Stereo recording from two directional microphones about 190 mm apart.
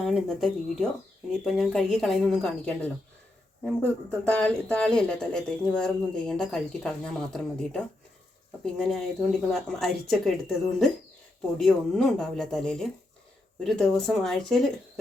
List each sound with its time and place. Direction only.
0.0 s speech: centre (ahead or behind)
4.3 s speech: 5° left (ahead or behind)